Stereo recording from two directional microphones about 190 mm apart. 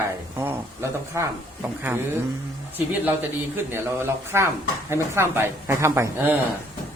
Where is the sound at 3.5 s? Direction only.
10° right (ahead or behind).